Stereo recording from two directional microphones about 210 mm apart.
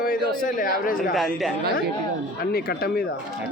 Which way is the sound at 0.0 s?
40° left (ahead or behind).